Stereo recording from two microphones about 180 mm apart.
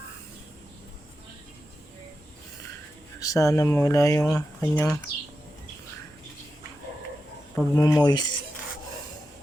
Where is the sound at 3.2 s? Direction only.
20° left (ahead or behind).